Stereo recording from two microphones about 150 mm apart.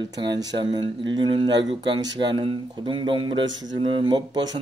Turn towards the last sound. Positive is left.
turn(degrees=-30)  # may be behind; listen again after turning